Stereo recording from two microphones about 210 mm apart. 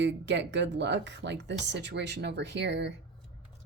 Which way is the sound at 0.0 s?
55° right (ahead or behind).